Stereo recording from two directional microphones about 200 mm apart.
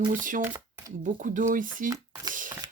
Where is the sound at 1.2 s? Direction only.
40° right (ahead or behind).